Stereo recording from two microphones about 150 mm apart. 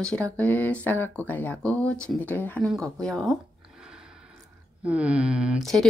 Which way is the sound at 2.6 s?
5° left (ahead or behind).